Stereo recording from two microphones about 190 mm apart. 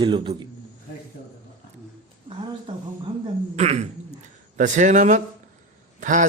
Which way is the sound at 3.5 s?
35° right (ahead or behind).